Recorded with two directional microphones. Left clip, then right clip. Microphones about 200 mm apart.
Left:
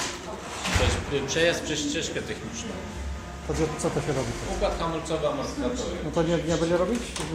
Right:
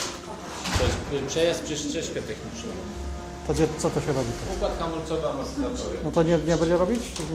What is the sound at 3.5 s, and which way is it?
Speech, 25° right (ahead or behind).